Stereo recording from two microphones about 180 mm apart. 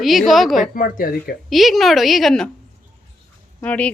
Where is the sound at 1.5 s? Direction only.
Centre (ahead or behind).